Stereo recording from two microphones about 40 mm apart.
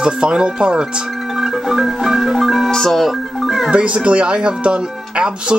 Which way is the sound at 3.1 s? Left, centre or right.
Centre.